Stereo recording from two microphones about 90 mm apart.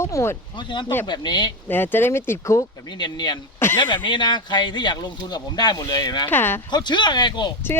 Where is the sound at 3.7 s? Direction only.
65° left (ahead or behind).